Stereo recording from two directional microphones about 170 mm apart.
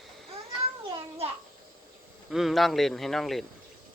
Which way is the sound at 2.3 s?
Centre (ahead or behind).